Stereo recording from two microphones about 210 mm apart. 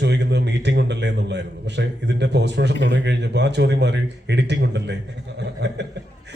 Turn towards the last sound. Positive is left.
turn(degrees=-55)  # may be behind; listen again after turning